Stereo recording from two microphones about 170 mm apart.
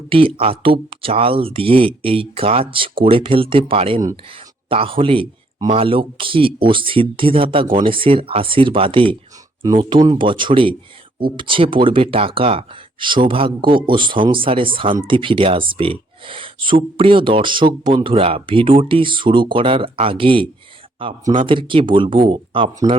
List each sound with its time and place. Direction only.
0.1 s speech: 30° right (ahead or behind)